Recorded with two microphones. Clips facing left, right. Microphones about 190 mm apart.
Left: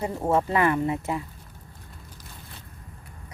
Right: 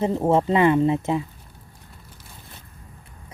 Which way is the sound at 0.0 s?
20° right (ahead or behind).